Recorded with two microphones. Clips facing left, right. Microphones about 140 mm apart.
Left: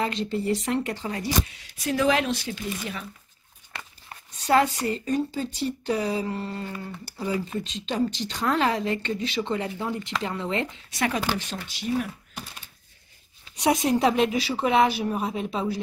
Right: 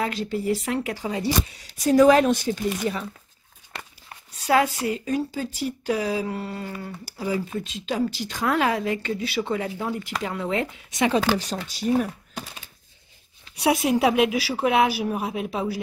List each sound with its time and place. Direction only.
0.0 s speech: 5° right (ahead or behind)
1.6 s speech: 40° right (ahead or behind)
4.5 s speech: 5° right (ahead or behind)
10.9 s speech: 20° right (ahead or behind)
11.6 s speech: 40° right (ahead or behind)
13.6 s speech: 5° right (ahead or behind)